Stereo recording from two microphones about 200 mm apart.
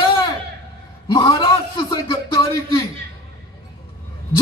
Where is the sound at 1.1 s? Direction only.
20° left (ahead or behind).